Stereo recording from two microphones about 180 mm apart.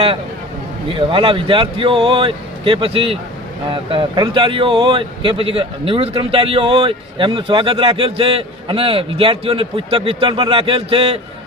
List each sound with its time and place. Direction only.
0.9 s a man's voice: 30° right (ahead or behind)